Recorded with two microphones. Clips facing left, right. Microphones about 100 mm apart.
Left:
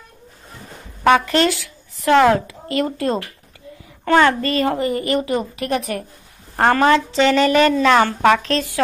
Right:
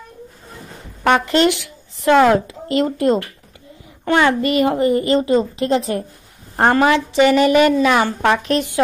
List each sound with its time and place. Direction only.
1.0 s a woman's voice: 20° right (ahead or behind)